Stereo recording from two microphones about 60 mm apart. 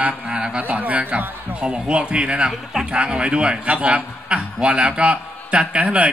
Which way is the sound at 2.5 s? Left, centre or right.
Centre.